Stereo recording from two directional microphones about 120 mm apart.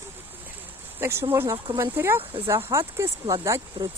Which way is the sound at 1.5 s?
40° right (ahead or behind).